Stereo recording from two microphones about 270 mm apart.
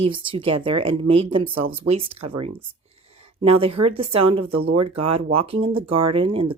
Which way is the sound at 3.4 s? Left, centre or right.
Right.